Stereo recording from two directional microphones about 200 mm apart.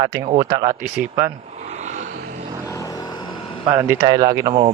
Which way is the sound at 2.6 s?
15° left (ahead or behind).